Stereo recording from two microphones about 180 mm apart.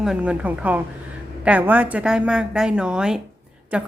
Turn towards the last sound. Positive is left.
turn(degrees=-5)  # may be behind; listen again after turning